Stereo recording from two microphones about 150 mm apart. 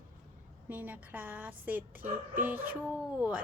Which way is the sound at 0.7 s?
10° right (ahead or behind).